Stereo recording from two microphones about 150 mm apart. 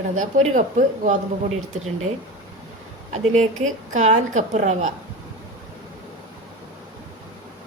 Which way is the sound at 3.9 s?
55° right (ahead or behind).